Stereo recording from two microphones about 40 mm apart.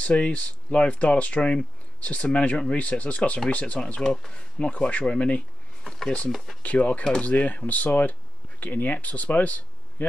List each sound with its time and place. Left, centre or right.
0.0 s speech: left
3.8 s speech: centre
4.6 s speech: left
5.9 s a sound: centre
6.3 s speech: centre
6.6 s speech: left